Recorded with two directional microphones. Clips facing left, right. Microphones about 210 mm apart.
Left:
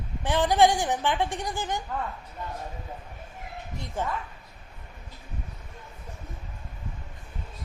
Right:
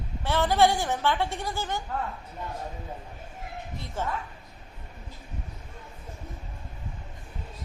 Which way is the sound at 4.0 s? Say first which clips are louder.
Left 1 dB; 15° left (ahead or behind).